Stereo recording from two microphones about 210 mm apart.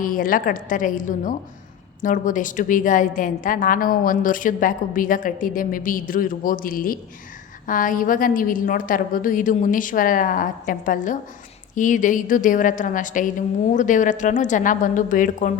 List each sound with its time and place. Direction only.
0.0 s a woman's voice: 40° left (ahead or behind)